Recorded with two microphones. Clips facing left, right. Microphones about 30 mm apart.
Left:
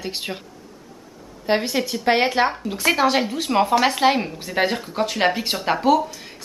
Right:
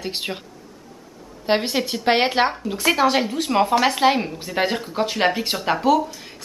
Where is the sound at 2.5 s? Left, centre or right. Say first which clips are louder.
Even; centre.